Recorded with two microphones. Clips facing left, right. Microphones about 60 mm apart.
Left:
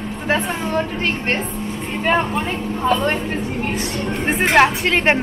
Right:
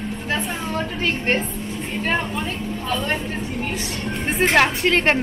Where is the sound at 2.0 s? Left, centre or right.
Left.